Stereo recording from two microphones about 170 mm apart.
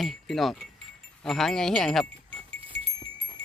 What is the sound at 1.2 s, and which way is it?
Speech, centre (ahead or behind).